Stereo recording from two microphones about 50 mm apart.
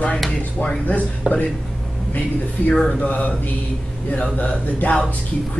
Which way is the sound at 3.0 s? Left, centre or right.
Left.